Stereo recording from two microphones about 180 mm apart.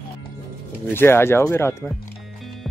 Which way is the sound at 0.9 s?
15° left (ahead or behind).